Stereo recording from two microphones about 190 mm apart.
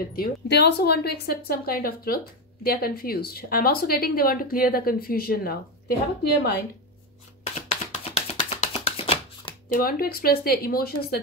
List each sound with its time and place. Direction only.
0.1 s speech: 55° left (ahead or behind)
7.7 s shuffling cards: 35° left (ahead or behind)
9.7 s speech: 50° left (ahead or behind)